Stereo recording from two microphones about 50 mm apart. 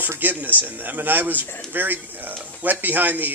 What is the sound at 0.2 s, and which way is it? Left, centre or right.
Speech, right.